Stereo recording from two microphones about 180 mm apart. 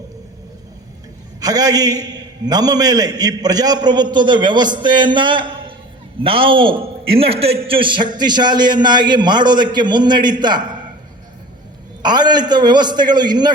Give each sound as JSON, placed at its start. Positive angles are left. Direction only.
{"t": 1.4, "sound": "a man's voice", "side_deg": -20}
{"t": 12.0, "sound": "a man's voice", "side_deg": -25}